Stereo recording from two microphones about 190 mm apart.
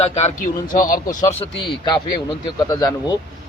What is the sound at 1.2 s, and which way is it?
Speech, 15° left (ahead or behind).